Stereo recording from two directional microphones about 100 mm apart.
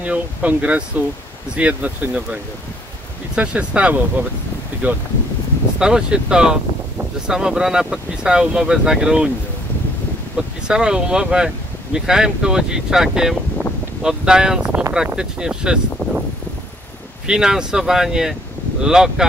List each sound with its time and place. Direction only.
0.0 s speech: 15° right (ahead or behind)
3.3 s speech: 10° right (ahead or behind)
5.8 s speech: 10° right (ahead or behind)
10.3 s speech: 5° right (ahead or behind)
14.7 s boat: 20° right (ahead or behind)
15.1 s speech: 10° right (ahead or behind)
17.3 s speech: 5° right (ahead or behind)